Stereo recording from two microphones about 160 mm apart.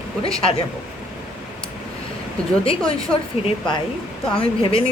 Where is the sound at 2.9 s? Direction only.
35° left (ahead or behind).